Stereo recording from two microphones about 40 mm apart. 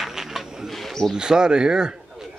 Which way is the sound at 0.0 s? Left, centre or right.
Centre.